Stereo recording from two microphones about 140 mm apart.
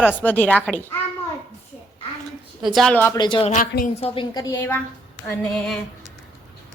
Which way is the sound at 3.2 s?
35° left (ahead or behind).